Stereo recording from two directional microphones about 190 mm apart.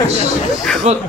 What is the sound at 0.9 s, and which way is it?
Speech, 35° right (ahead or behind).